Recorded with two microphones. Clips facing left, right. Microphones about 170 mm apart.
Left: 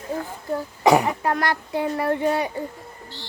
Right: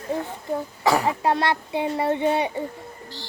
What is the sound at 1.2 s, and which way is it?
Speech, 25° right (ahead or behind).